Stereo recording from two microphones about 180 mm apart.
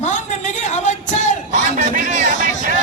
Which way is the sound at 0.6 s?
40° left (ahead or behind).